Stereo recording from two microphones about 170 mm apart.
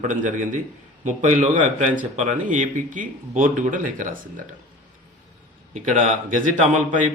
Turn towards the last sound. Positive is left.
turn(degrees=-50)  # may be behind; listen again after turning